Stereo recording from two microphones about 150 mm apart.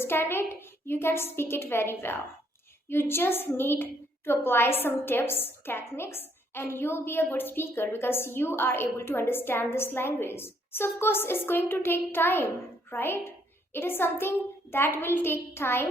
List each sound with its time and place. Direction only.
0.0 s a woman's voice: 15° left (ahead or behind)